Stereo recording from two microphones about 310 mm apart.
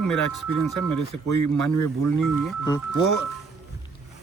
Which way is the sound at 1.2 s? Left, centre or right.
Right.